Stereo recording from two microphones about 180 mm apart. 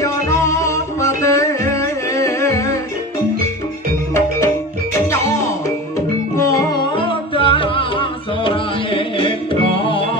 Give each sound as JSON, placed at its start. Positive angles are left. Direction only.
{"t": 0.0, "sound": "music", "side_deg": 15}
{"t": 5.0, "sound": "music", "side_deg": 15}
{"t": 6.3, "sound": "music", "side_deg": 15}
{"t": 7.1, "sound": "music", "side_deg": 30}